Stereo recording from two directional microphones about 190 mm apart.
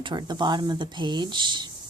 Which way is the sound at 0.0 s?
25° right (ahead or behind).